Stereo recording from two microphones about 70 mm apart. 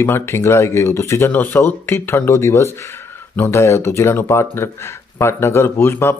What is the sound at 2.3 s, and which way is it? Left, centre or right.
Speech, left.